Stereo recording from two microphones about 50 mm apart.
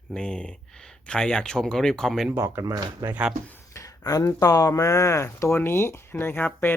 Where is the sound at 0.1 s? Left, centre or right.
Centre.